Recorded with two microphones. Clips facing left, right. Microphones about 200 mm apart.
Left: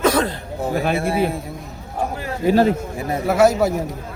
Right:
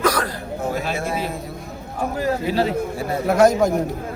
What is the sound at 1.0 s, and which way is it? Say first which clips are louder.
Speech: left 6 dB; 55° left (ahead or behind).